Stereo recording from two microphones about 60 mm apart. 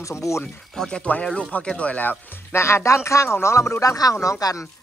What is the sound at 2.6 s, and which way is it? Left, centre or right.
Speech, left.